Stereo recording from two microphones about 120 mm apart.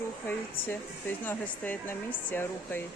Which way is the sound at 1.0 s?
15° left (ahead or behind).